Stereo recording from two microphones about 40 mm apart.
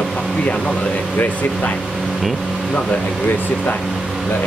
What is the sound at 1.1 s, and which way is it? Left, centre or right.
Speech, left.